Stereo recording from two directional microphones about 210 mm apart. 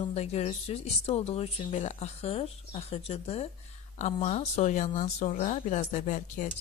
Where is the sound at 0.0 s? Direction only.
30° left (ahead or behind).